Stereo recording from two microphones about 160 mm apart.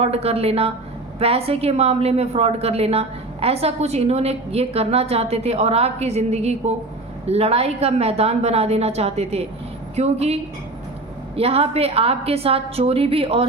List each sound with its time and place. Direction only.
0.0 s a woman's voice: 40° right (ahead or behind)
11.3 s a woman's voice: 40° right (ahead or behind)